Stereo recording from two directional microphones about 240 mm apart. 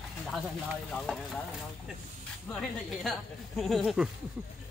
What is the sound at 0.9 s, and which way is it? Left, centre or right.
Speech, centre.